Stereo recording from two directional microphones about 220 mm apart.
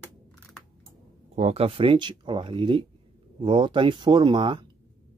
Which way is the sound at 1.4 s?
30° right (ahead or behind).